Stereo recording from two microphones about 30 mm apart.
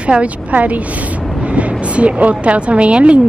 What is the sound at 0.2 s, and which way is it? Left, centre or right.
Speech, right.